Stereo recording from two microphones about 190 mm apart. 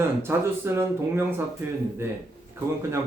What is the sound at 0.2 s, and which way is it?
Speech, 15° right (ahead or behind).